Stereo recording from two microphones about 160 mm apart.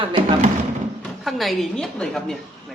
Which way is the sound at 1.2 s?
Centre (ahead or behind).